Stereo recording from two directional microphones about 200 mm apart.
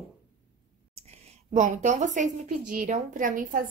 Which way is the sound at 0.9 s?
30° right (ahead or behind).